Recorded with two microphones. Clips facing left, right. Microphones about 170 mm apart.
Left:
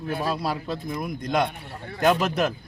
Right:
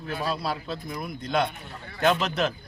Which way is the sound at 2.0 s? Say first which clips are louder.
Left 2 dB; 10° left (ahead or behind).